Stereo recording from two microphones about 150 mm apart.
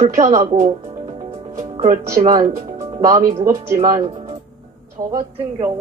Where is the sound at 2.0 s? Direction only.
20° right (ahead or behind).